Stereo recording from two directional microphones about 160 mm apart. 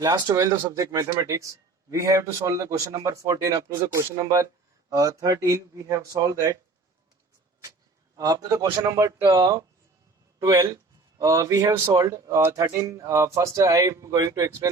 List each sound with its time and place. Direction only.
0.0 s speech: 25° right (ahead or behind)
8.1 s speech: 25° right (ahead or behind)